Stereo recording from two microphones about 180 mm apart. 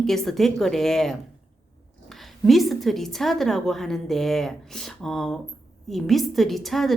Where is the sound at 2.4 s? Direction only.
Centre (ahead or behind).